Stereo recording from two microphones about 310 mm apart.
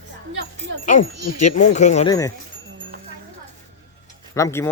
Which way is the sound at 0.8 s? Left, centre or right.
Left.